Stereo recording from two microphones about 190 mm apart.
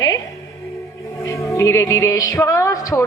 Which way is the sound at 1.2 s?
15° left (ahead or behind).